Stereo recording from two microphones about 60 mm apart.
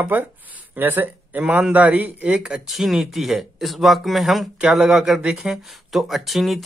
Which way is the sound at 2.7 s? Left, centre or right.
Centre.